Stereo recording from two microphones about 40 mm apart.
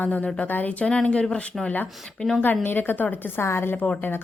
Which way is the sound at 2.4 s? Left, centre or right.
Left.